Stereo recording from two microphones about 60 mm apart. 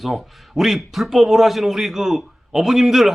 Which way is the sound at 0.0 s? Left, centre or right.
Centre.